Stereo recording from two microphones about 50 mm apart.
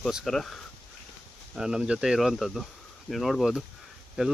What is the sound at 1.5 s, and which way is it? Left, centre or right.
Speech, centre.